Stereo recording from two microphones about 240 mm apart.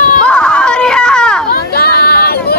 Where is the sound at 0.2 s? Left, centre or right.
Centre.